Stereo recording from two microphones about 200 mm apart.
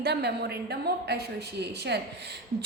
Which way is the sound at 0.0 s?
55° right (ahead or behind).